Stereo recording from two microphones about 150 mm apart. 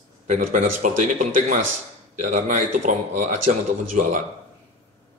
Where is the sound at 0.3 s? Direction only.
55° right (ahead or behind).